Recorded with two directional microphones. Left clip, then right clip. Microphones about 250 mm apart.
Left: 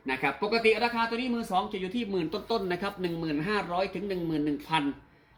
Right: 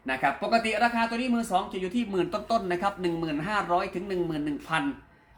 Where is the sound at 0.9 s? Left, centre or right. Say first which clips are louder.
Right 1 dB; centre.